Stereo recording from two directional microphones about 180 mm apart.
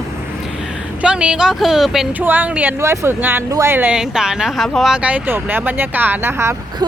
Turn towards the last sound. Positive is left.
turn(degrees=-15)  # may be behind; listen again after turning